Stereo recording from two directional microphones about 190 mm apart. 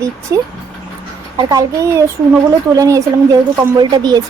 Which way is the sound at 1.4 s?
20° right (ahead or behind).